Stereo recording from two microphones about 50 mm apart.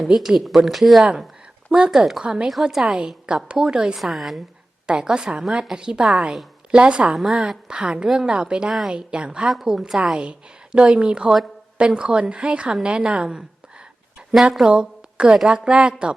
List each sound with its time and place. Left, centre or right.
0.1 s a woman's voice: centre
1.7 s a woman's voice: centre
2.2 s a woman's voice: centre
2.5 s speech: centre
2.8 s a woman's voice: centre
3.9 s speech: centre
4.9 s a woman's voice: centre
14.6 s a woman's voice: centre